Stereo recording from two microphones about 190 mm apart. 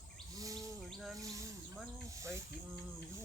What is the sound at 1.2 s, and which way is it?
Insect, 15° right (ahead or behind).